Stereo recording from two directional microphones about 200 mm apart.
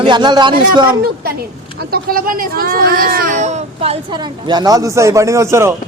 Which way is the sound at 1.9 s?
45° right (ahead or behind).